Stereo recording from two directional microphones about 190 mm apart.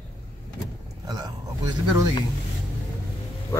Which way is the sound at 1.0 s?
20° right (ahead or behind).